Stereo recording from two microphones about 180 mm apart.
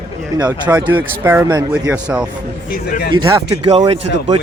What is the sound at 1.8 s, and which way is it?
Speech, 5° right (ahead or behind).